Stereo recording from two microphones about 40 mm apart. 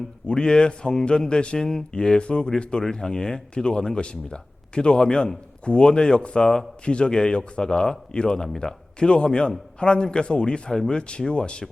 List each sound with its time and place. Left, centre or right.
0.3 s a man's voice: left
1.5 s speech: centre
1.9 s a man's voice: left